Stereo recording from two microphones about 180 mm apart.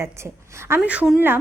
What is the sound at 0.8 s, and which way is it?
Speech, 5° right (ahead or behind).